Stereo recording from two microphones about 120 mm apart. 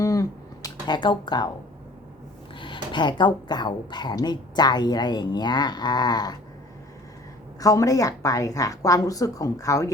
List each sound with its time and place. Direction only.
0.0 s a sound: 30° left (ahead or behind)
2.6 s speech: 45° left (ahead or behind)
7.6 s a woman's voice: 30° left (ahead or behind)